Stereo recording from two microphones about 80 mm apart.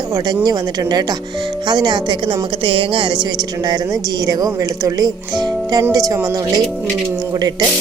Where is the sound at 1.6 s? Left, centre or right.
Right.